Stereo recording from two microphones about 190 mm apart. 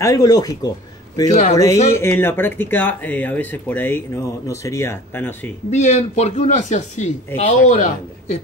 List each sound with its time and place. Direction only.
0.0 s a man's voice: 20° left (ahead or behind)
1.3 s speech: 40° left (ahead or behind)
1.9 s speech: 15° left (ahead or behind)
5.7 s speech: 35° left (ahead or behind)